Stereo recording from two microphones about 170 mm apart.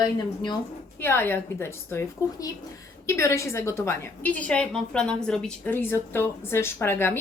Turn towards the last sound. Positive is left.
turn(degrees=15)  # may be behind; listen again after turning